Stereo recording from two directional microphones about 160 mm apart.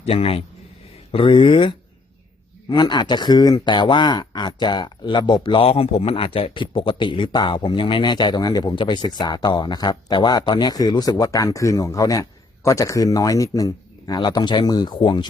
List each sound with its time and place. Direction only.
0.0 s speech: 40° left (ahead or behind)